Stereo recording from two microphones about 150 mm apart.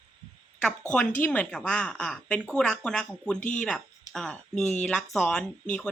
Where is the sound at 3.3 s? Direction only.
55° left (ahead or behind).